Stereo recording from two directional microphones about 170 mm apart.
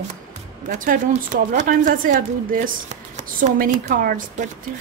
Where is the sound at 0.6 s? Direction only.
50° right (ahead or behind).